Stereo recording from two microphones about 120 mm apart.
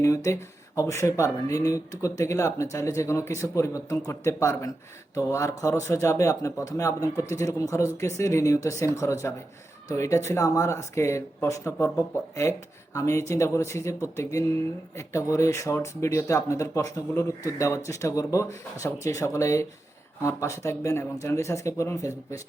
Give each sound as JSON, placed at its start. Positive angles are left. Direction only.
{"t": 0.0, "sound": "speech", "side_deg": 25}